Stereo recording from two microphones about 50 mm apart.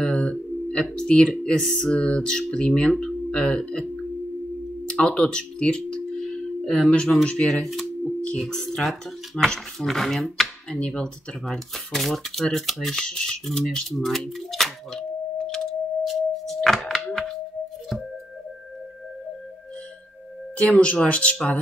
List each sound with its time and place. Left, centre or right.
0.0 s a sound: centre
0.8 s speech: centre
4.8 s tuning fork: centre
7.4 s speech: centre
8.0 s a sound: centre
8.4 s speech: centre
10.7 s speech: centre
16.0 s singing bowl: centre
20.5 s speech: left